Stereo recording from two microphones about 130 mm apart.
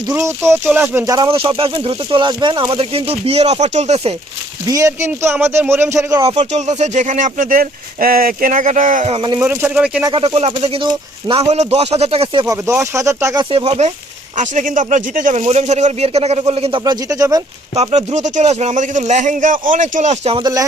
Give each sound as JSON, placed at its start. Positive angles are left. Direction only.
{"t": 0.1, "sound": "speech", "side_deg": -20}
{"t": 1.0, "sound": "speech", "side_deg": -30}
{"t": 1.3, "sound": "speech", "side_deg": -45}
{"t": 4.6, "sound": "speech", "side_deg": -25}
{"t": 6.4, "sound": "speech", "side_deg": -60}
{"t": 9.4, "sound": "speech", "side_deg": -15}
{"t": 10.0, "sound": "speech", "side_deg": -40}
{"t": 12.5, "sound": "speech", "side_deg": -25}
{"t": 13.4, "sound": "speech", "side_deg": -40}
{"t": 13.7, "sound": "speech", "side_deg": -55}
{"t": 14.3, "sound": "speech", "side_deg": -80}
{"t": 16.8, "sound": "speech", "side_deg": -30}
{"t": 17.7, "sound": "speech", "side_deg": -60}
{"t": 20.4, "sound": "speech", "side_deg": -25}